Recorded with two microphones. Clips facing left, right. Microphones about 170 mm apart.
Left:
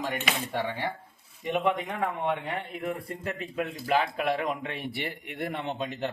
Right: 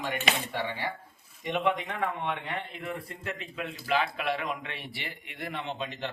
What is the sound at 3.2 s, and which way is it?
A man's voice, 50° left (ahead or behind).